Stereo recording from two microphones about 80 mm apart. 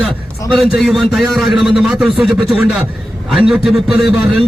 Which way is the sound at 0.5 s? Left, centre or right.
Centre.